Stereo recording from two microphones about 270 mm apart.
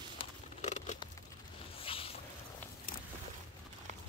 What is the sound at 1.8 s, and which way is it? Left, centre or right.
Zipper, centre.